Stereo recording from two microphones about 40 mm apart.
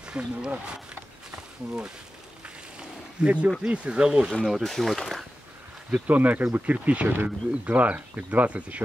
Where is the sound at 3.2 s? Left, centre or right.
Right.